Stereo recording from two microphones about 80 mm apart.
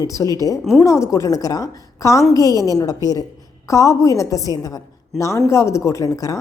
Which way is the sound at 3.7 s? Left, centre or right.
Left.